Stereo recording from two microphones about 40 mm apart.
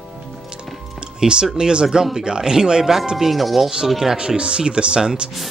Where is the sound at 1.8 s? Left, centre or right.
Centre.